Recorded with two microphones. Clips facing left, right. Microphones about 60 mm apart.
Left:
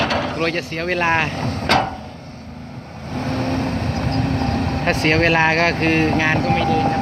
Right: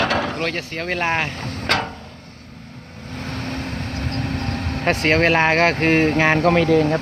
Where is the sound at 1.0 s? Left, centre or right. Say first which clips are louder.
Left 3 dB; centre.